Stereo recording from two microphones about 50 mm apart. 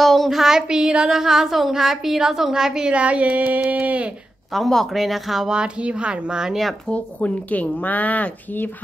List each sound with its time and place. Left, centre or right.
0.0 s a sound: centre
0.4 s a woman's voice: centre
3.0 s a sound: right
3.7 s speech: right
4.6 s speech: centre
5.5 s speech: right
6.9 s speech: left